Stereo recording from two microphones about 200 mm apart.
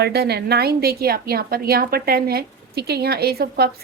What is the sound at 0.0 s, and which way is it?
A woman's voice, 55° right (ahead or behind).